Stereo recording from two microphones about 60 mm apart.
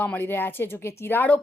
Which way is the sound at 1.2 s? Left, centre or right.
Left.